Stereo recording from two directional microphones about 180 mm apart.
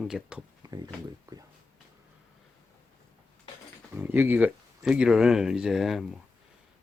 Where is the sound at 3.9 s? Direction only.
10° right (ahead or behind).